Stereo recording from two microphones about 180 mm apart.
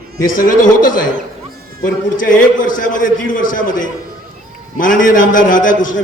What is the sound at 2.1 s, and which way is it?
A man's voice, 50° left (ahead or behind).